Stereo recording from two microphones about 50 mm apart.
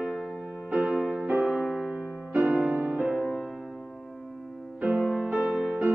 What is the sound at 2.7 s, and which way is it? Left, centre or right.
Music, right.